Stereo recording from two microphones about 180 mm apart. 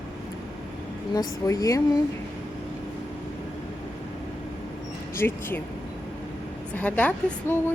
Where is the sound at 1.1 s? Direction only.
20° left (ahead or behind).